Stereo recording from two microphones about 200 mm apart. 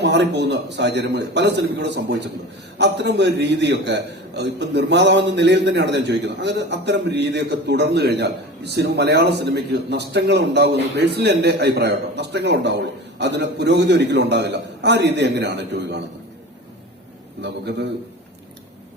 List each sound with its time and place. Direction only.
0.0 s a man's voice: 55° right (ahead or behind)
17.4 s a man's voice: 60° right (ahead or behind)